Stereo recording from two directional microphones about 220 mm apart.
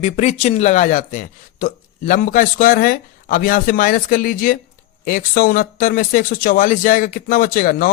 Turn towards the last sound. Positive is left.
turn(degrees=40)  # may be behind; listen again after turning